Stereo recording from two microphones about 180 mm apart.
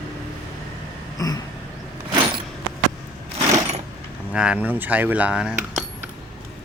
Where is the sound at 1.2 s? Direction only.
20° left (ahead or behind).